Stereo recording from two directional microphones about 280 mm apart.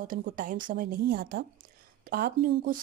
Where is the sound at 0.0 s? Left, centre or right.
Right.